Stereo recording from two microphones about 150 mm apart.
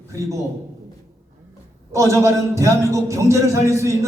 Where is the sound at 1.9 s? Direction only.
20° right (ahead or behind).